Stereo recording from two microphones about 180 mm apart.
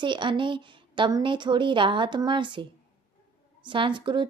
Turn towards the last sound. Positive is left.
turn(degrees=-25)  # may be behind; listen again after turning